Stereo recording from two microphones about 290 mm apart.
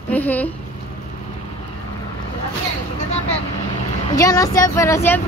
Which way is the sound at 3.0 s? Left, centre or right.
Left.